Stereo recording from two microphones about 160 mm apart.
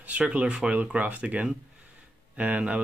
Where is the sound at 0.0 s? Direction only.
10° right (ahead or behind).